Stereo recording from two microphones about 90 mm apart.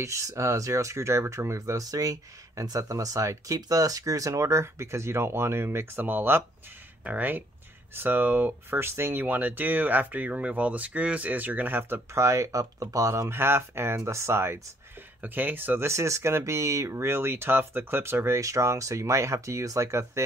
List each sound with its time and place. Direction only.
0.0 s speech: 35° right (ahead or behind)